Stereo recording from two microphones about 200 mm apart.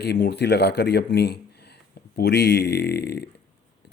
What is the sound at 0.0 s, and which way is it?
Speech, 55° left (ahead or behind).